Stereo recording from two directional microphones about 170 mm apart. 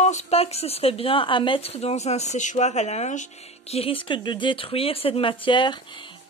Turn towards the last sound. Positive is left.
turn(degrees=30)  # may be behind; listen again after turning